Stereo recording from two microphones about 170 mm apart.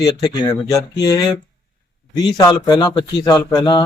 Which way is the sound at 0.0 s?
25° left (ahead or behind).